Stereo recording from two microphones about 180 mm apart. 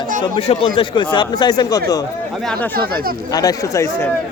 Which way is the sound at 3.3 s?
20° left (ahead or behind).